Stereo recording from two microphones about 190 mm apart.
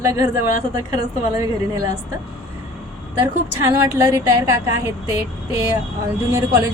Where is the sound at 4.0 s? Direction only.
15° right (ahead or behind).